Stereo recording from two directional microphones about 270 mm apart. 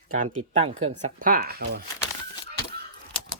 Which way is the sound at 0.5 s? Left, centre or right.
Right.